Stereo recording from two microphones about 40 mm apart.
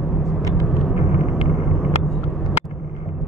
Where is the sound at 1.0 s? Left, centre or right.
Right.